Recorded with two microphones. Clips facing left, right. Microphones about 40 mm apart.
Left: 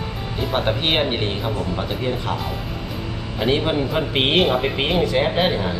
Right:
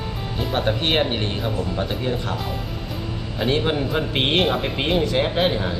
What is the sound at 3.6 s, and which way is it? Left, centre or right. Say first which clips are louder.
Speech: left 1 dB; centre.